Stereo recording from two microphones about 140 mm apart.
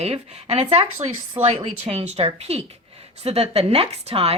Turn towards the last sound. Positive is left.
turn(degrees=-45)  # may be behind; listen again after turning